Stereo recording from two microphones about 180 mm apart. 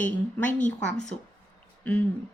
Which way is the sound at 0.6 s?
45° left (ahead or behind).